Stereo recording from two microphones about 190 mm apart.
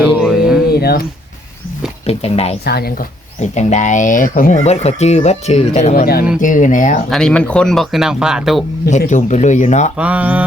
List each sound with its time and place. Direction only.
0.0 s music: centre (ahead or behind)
0.8 s speech: 55° left (ahead or behind)
2.0 s speech: 35° left (ahead or behind)
2.6 s speech: 55° left (ahead or behind)
3.4 s speech: 40° left (ahead or behind)
7.1 s speech: 5° left (ahead or behind)
9.0 s speech: 40° left (ahead or behind)
10.0 s speech: 5° right (ahead or behind)